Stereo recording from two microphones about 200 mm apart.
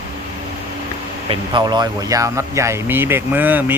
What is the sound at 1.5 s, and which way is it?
Speech, 20° right (ahead or behind).